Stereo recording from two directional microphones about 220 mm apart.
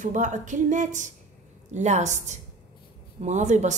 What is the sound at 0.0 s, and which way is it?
A woman's voice, 35° right (ahead or behind).